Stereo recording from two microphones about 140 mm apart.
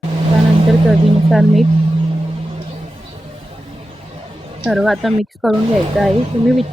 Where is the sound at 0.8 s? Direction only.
Centre (ahead or behind).